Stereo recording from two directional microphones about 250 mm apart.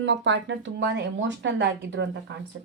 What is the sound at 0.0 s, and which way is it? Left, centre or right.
Speech, right.